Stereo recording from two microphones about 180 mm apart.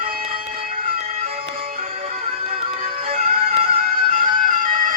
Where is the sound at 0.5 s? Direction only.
50° right (ahead or behind).